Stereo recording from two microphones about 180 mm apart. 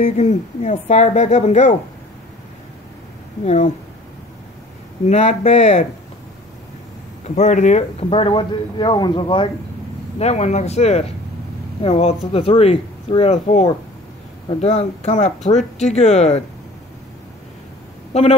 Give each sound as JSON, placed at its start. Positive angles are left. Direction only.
{"t": 0.0, "sound": "speech", "side_deg": 40}
{"t": 3.4, "sound": "speech", "side_deg": 40}
{"t": 5.0, "sound": "speech", "side_deg": 40}
{"t": 7.2, "sound": "speech", "side_deg": 40}
{"t": 10.1, "sound": "speech", "side_deg": 35}
{"t": 18.1, "sound": "speech", "side_deg": 40}